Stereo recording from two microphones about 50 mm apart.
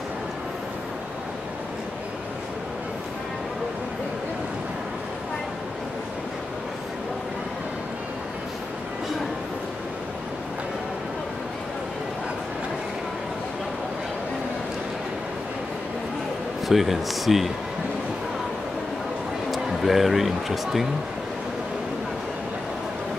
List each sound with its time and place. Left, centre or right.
16.6 s speech: centre
19.5 s speech: centre